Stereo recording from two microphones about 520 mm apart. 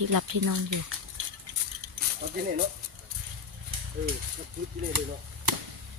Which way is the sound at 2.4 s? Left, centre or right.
Centre.